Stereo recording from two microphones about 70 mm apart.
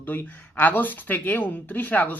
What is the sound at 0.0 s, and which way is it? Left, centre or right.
Speech, left.